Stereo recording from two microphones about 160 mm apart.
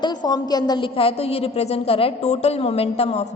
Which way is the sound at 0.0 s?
25° left (ahead or behind).